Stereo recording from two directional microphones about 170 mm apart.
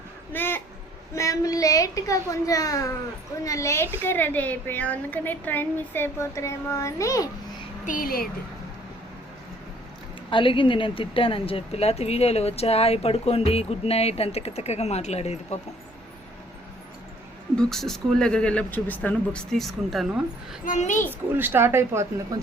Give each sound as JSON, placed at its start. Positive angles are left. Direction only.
{"t": 0.3, "sound": "a child's voice", "side_deg": 10}
{"t": 7.9, "sound": "speech", "side_deg": 55}
{"t": 10.2, "sound": "speech", "side_deg": 30}
{"t": 17.6, "sound": "speech", "side_deg": 0}
{"t": 20.7, "sound": "a child's voice", "side_deg": 45}
{"t": 21.1, "sound": "speech", "side_deg": -10}